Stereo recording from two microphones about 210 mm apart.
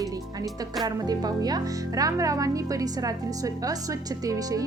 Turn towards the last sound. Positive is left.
turn(degrees=-15)  # may be behind; listen again after turning